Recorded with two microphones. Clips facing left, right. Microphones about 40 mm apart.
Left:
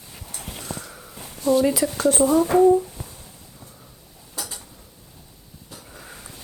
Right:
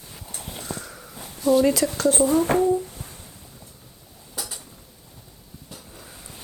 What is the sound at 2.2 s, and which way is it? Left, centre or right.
Speech, left.